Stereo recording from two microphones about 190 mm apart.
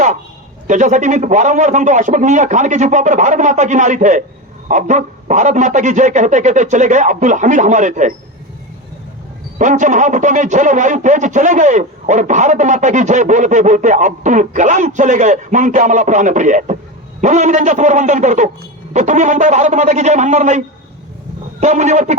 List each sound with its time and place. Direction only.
0.7 s speech: 40° right (ahead or behind)
9.6 s speech: 40° right (ahead or behind)